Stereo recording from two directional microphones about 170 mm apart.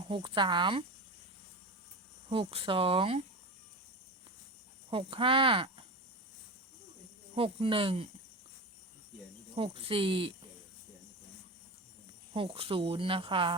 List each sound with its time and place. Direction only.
0.0 s speech: 30° right (ahead or behind)
2.3 s speech: 35° right (ahead or behind)
4.9 s speech: 30° right (ahead or behind)
7.3 s speech: 35° right (ahead or behind)
9.6 s speech: 35° right (ahead or behind)
12.3 s speech: 30° right (ahead or behind)